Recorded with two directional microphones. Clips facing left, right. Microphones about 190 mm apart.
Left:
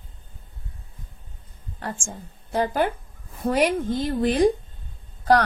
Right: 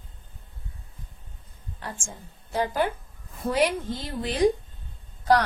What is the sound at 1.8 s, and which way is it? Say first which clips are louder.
A woman's voice: left 5 dB; 50° left (ahead or behind).